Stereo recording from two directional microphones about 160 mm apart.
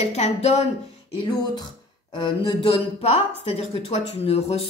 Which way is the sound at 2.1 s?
30° left (ahead or behind).